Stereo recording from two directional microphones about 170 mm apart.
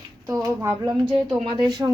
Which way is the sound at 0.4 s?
15° right (ahead or behind).